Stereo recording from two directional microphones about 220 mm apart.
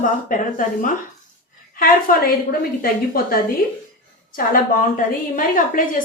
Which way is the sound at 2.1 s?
40° left (ahead or behind).